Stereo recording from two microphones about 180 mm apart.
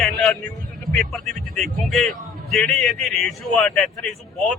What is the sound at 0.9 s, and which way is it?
Speech, centre (ahead or behind).